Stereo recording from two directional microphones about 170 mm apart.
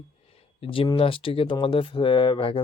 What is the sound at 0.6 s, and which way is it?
Speech, 30° left (ahead or behind).